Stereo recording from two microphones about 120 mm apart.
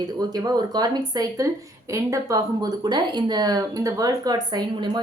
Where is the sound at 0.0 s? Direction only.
35° right (ahead or behind).